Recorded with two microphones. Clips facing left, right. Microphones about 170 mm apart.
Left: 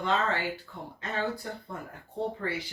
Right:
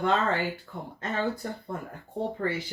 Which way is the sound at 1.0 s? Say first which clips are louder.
Right 3 dB; 45° right (ahead or behind).